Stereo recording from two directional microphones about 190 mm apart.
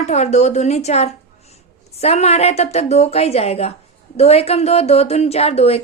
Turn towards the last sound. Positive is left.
turn(degrees=35)  # may be behind; listen again after turning